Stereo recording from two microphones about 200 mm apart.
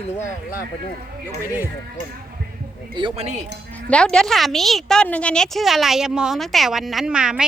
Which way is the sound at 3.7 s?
5° left (ahead or behind).